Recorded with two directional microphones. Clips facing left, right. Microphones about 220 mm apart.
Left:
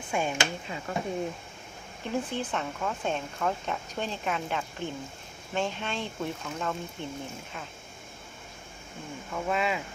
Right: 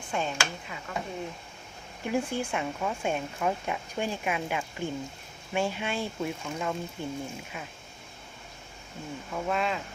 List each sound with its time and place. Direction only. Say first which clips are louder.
0.1 s speech: left 2 dB; 10° left (ahead or behind)
0.3 s speech: left 3 dB; 30° left (ahead or behind)
2.0 s speech: right 2 dB; 10° right (ahead or behind)
9.3 s speech: left 1 dB; centre (ahead or behind)